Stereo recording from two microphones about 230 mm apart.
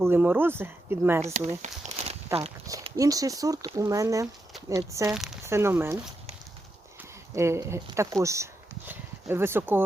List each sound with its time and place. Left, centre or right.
0.0 s speech: centre
1.6 s walk: right
2.6 s speech: centre
5.1 s speech: centre
7.3 s speech: centre